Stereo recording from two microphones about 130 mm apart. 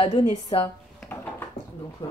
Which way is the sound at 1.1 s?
15° left (ahead or behind).